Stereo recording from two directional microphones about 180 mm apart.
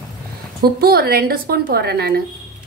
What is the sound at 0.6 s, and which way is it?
A woman's voice, 60° right (ahead or behind).